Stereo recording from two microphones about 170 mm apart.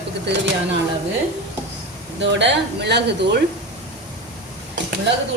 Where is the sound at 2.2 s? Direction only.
90° right.